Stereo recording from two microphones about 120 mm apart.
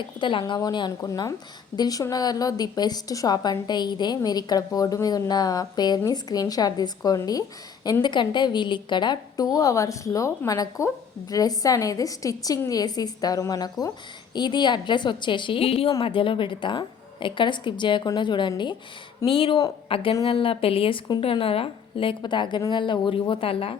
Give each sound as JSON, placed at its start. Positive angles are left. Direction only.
{"t": 0.0, "sound": "a woman's voice", "side_deg": 40}